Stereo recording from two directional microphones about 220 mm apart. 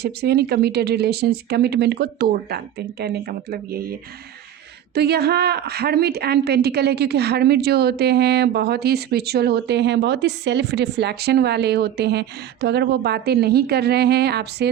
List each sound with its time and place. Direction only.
0.0 s a woman's voice: 45° right (ahead or behind)
4.9 s a woman's voice: 45° right (ahead or behind)